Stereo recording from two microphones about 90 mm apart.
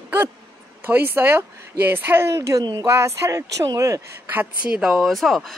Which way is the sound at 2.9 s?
30° right (ahead or behind).